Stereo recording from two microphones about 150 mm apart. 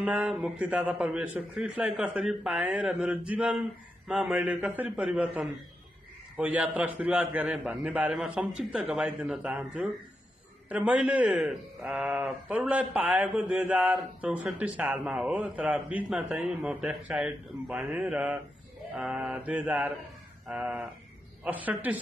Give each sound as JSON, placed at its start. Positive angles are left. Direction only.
{"t": 0.0, "sound": "a man's voice", "side_deg": -5}